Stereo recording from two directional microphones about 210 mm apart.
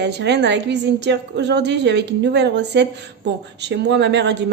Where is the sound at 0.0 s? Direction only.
55° right (ahead or behind).